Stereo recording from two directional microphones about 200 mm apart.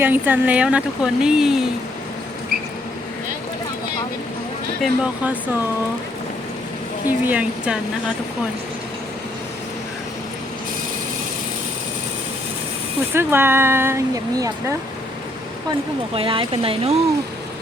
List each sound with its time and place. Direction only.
0.0 s a woman's voice: 10° right (ahead or behind)
4.8 s speech: 5° right (ahead or behind)
7.1 s speech: 10° right (ahead or behind)
13.1 s speech: 10° right (ahead or behind)
16.1 s speech: 25° right (ahead or behind)